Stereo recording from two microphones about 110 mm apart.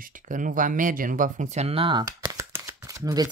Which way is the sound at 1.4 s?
80° right.